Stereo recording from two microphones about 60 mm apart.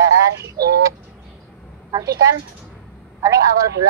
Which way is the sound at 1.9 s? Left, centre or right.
Right.